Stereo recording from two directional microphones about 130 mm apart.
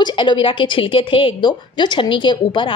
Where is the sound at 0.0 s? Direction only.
40° left (ahead or behind).